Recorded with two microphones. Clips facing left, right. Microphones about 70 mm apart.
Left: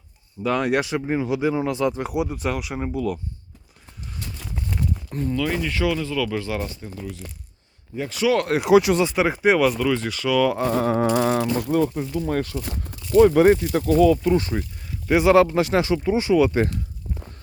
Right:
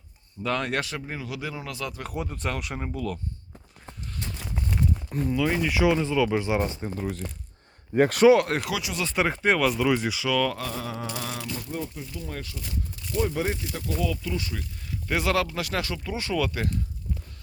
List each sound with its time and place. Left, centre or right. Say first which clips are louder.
0.4 s speech: left 6 dB; centre
3.8 s a sound: even; right
4.4 s clip-clop: even; centre
5.9 s speech: right 1 dB; right
7.9 s speech: right 6 dB; right
8.4 s speech: left 9 dB; centre
9.8 s speech: left 2 dB; centre
10.7 s mantra: left 13 dB; left
11.6 s speech: left 12 dB; left
12.9 s speech: left 14 dB; left
14.0 s mantra: left 12 dB; left
15.0 s speech: left 10 dB; centre